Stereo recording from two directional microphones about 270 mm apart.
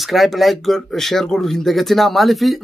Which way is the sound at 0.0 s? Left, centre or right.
Centre.